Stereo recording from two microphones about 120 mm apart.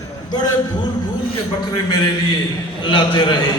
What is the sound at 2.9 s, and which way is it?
Speech, 40° left (ahead or behind).